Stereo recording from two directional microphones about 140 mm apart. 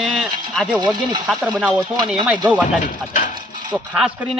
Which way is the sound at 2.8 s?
65° left (ahead or behind).